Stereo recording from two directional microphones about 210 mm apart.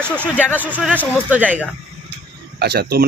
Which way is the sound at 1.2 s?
5° right (ahead or behind).